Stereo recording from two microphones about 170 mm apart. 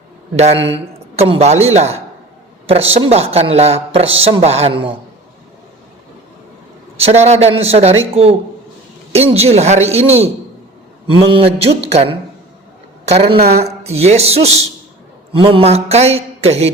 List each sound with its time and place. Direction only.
0.3 s speech: 35° right (ahead or behind)
6.9 s speech: 40° right (ahead or behind)